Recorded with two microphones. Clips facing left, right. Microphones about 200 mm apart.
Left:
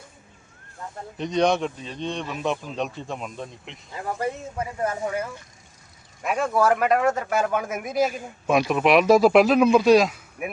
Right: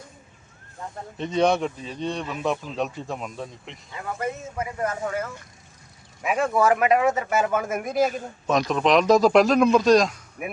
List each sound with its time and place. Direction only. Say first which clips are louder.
1.2 s a man's voice: even; 5° right (ahead or behind)
3.9 s speech: left 2 dB; 35° left (ahead or behind)
4.9 s speech: left 1 dB; 15° left (ahead or behind)
6.2 s a man's voice: even; 5° right (ahead or behind)